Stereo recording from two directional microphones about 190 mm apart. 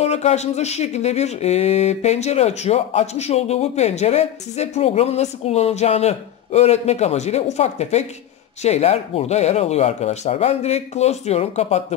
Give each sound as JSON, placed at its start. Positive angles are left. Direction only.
{"t": 0.0, "sound": "speech", "side_deg": 35}